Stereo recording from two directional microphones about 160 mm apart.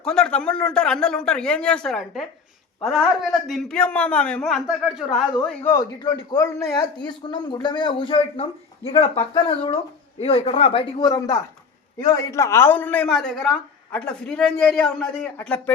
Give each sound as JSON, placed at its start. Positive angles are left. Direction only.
{"t": 0.0, "sound": "a man's voice", "side_deg": 5}
{"t": 5.6, "sound": "a man's voice", "side_deg": 20}
{"t": 11.9, "sound": "speech", "side_deg": 20}